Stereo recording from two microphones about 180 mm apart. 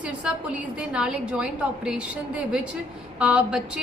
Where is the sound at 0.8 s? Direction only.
5° right (ahead or behind).